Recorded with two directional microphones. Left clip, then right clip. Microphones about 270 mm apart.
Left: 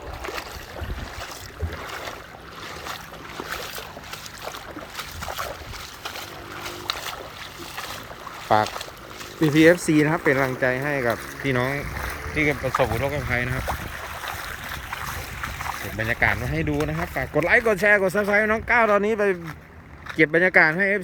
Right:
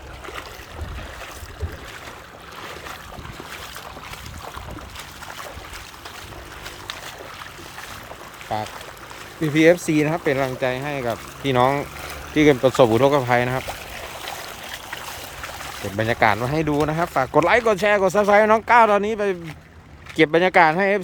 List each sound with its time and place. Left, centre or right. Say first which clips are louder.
8.4 s speech: left 7 dB; centre
9.4 s speech: even; centre
12.6 s speech: right 7 dB; right
13.2 s speech: right 6 dB; centre
16.0 s speech: right 4 dB; centre